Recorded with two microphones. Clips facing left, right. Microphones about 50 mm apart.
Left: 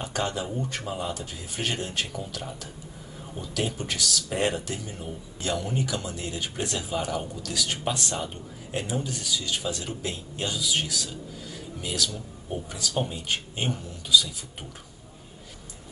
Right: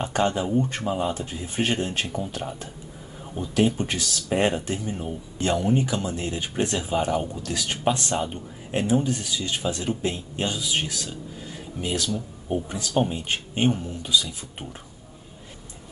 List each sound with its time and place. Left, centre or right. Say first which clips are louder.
0.0 s speech: right 6 dB; right